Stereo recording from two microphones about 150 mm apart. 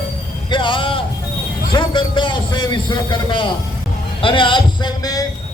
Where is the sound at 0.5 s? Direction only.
30° left (ahead or behind).